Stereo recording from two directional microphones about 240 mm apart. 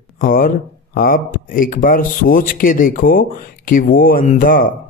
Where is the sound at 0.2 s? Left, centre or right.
Left.